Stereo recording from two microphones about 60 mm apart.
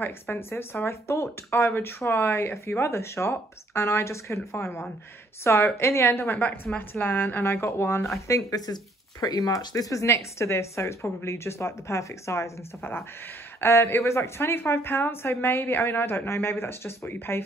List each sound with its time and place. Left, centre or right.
0.0 s a woman's voice: left
9.2 s speech: left
13.6 s a woman's voice: left